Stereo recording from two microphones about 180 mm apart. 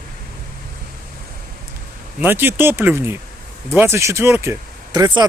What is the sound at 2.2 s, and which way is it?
Speech, 10° right (ahead or behind).